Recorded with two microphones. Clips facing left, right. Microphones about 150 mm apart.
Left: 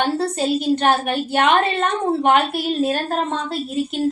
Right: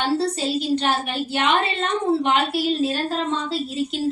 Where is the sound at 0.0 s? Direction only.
50° left (ahead or behind).